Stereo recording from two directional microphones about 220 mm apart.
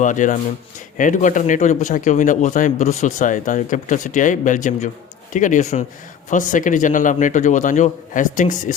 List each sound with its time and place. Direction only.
0.0 s speech: 35° left (ahead or behind)